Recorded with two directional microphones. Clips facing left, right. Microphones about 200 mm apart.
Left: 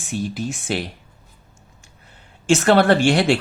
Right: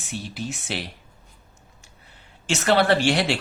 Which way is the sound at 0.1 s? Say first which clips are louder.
Left 6 dB; 45° left (ahead or behind).